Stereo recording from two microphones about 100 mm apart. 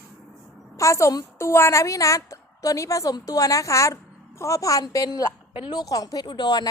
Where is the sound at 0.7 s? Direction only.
30° left (ahead or behind).